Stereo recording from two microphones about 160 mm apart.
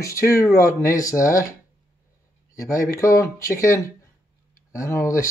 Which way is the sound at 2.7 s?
60° left (ahead or behind).